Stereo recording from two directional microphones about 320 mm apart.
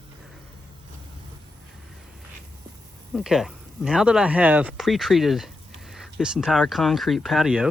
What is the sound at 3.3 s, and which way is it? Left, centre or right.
Speech, centre.